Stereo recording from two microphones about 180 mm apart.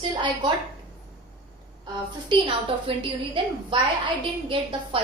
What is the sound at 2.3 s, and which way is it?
A woman's voice, 30° right (ahead or behind).